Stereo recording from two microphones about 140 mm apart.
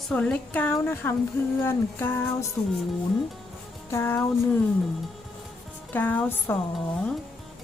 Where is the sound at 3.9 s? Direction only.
15° left (ahead or behind).